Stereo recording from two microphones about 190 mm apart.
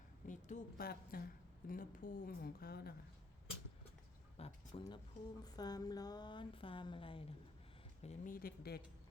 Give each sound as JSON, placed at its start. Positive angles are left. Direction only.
{"t": 0.3, "sound": "a sound", "side_deg": 40}
{"t": 0.8, "sound": "speech", "side_deg": 55}
{"t": 4.4, "sound": "speech", "side_deg": 35}
{"t": 5.4, "sound": "speech", "side_deg": 20}
{"t": 8.0, "sound": "speech", "side_deg": 45}